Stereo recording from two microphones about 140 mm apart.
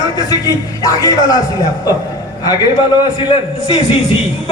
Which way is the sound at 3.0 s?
35° left (ahead or behind).